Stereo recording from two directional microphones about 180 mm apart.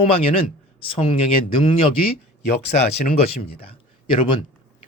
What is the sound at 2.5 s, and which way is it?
Speech, 45° left (ahead or behind).